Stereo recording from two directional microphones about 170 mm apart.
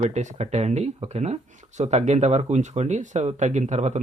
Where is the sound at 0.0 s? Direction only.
45° right (ahead or behind).